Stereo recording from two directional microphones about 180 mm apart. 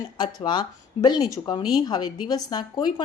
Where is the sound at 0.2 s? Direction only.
25° left (ahead or behind).